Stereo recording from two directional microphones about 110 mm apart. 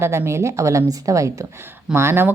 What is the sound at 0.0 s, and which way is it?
A woman's voice, 25° right (ahead or behind).